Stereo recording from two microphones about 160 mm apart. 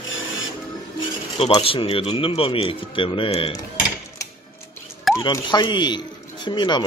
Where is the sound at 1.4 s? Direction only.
35° left (ahead or behind).